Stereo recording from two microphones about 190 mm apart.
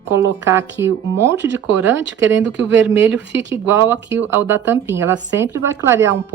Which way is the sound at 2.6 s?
5° right (ahead or behind).